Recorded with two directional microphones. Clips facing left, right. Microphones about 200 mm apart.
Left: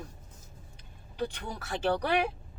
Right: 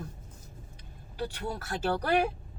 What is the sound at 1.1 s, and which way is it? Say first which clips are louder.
Speech: even; 5° right (ahead or behind).